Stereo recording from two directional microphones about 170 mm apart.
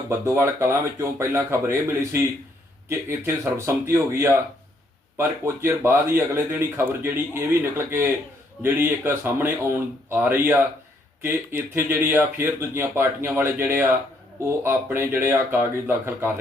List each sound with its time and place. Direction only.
0.1 s speech: 15° right (ahead or behind)
3.8 s speech: 15° right (ahead or behind)